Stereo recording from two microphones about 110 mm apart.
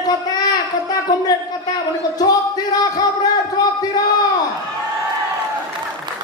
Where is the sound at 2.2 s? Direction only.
35° left (ahead or behind).